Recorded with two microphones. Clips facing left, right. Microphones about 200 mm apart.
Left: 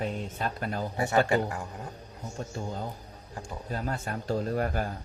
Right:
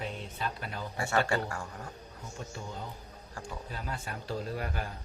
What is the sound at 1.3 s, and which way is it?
Speech, 20° left (ahead or behind).